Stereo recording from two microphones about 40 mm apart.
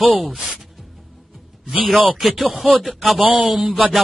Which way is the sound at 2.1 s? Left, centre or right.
Centre.